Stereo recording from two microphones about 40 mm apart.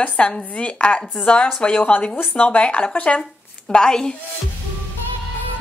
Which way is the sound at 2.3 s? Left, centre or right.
Left.